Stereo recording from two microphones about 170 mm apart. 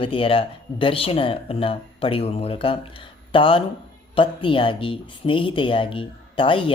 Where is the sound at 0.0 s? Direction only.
30° left (ahead or behind).